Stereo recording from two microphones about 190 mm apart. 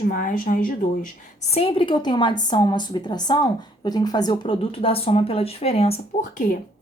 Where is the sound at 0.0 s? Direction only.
45° left (ahead or behind).